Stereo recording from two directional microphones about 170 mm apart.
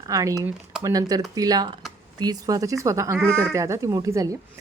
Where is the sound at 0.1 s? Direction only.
20° right (ahead or behind).